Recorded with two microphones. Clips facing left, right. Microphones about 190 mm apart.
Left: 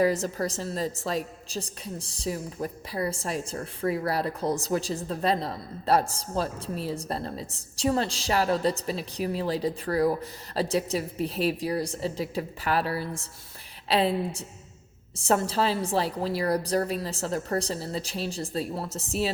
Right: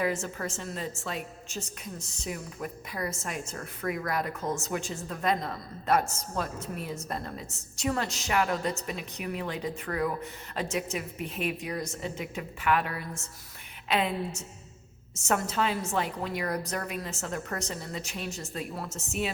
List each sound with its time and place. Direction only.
0.0 s a woman's voice: 35° left (ahead or behind)